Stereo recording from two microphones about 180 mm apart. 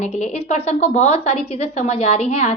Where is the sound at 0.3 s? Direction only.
35° left (ahead or behind).